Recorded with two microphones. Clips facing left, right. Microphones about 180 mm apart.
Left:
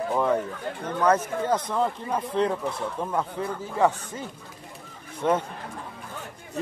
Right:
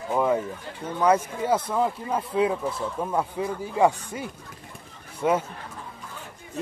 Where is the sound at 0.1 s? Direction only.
5° right (ahead or behind).